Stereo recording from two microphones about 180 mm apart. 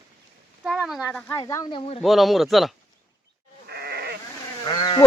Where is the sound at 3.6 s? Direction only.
60° right (ahead or behind).